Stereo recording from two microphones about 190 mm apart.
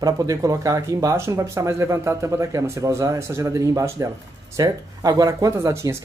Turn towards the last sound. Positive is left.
turn(degrees=-15)  # may be behind; listen again after turning